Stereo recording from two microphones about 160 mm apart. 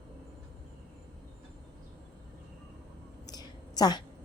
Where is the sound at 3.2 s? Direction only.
25° left (ahead or behind).